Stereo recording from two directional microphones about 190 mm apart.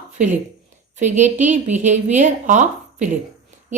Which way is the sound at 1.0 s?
40° right (ahead or behind).